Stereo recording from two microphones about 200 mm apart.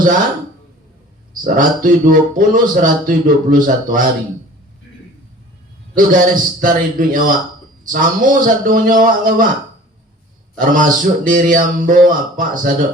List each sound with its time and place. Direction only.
1.5 s speech: 45° right (ahead or behind)
6.0 s speech: 45° right (ahead or behind)
10.6 s speech: 45° right (ahead or behind)